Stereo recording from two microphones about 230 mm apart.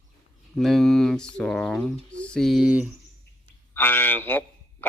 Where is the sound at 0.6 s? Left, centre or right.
Centre.